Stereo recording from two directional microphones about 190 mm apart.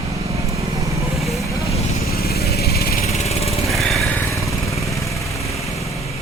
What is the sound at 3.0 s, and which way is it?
Vehicle, 35° left (ahead or behind).